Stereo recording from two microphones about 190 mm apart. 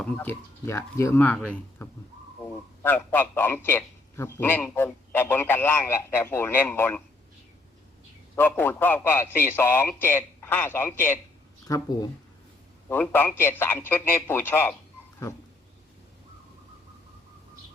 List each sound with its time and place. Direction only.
0.0 s a man's voice: 10° left (ahead or behind)
8.4 s a man's voice: 10° left (ahead or behind)
12.9 s a man's voice: 10° left (ahead or behind)